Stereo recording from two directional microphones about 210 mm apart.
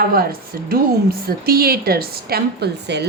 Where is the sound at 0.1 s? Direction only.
45° right (ahead or behind).